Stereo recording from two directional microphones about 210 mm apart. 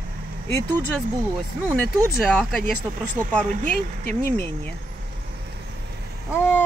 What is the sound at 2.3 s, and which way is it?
Speech, 5° left (ahead or behind).